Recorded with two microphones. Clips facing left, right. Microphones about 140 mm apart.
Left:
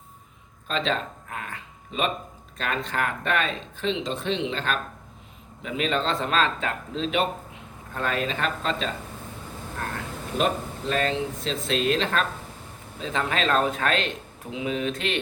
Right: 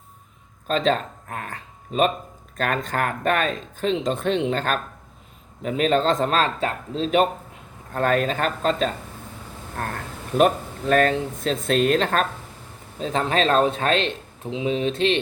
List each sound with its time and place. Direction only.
0.7 s a man's voice: 40° right (ahead or behind)
10.3 s speech: 55° right (ahead or behind)
13.0 s a man's voice: 35° right (ahead or behind)